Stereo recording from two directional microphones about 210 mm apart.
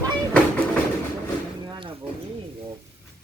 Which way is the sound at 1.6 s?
20° right (ahead or behind).